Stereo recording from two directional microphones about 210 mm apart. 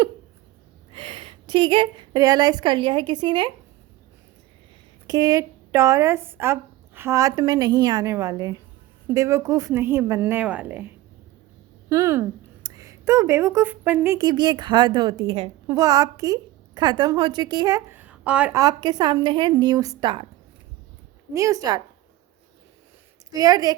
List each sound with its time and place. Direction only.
0.9 s a woman's voice: 25° right (ahead or behind)
5.0 s a woman's voice: 15° right (ahead or behind)
18.6 s a woman's voice: 20° right (ahead or behind)
21.3 s a woman's voice: 15° right (ahead or behind)
23.3 s a woman's voice: 15° right (ahead or behind)